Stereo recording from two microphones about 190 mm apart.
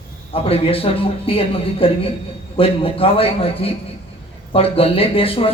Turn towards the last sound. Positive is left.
turn(degrees=30)  # may be behind; listen again after turning